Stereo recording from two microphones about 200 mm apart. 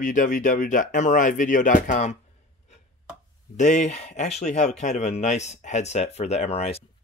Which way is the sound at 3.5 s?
40° left (ahead or behind).